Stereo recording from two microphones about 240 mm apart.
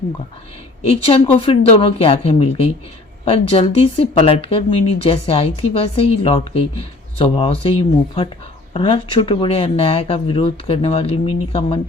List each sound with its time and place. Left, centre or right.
1.0 s speech: left